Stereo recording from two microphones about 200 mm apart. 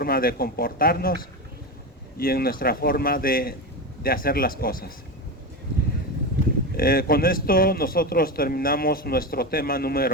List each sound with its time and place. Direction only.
0.0 s a man's voice: 45° left (ahead or behind)
6.7 s a man's voice: 45° left (ahead or behind)